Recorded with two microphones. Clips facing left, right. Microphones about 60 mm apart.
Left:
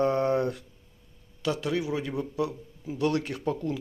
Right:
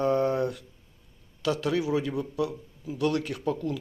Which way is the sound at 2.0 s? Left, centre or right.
Left.